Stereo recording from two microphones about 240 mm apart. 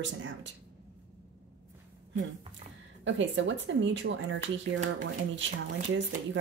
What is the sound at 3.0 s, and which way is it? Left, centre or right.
Speech, right.